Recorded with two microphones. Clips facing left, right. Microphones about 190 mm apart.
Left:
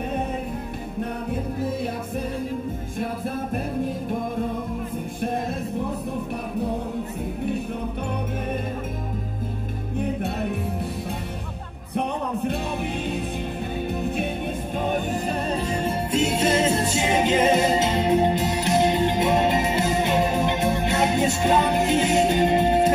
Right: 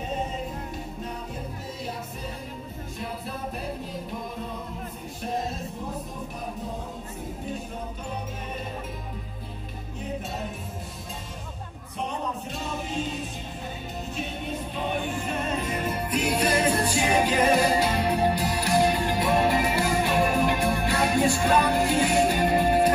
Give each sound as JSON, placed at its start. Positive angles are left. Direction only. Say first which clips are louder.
{"t": 9.9, "sound": "music", "louder": "left 7 dB", "side_deg": 60}
{"t": 11.9, "sound": "music", "louder": "left 6 dB", "side_deg": 60}
{"t": 14.8, "sound": "music", "louder": "left 5 dB", "side_deg": 45}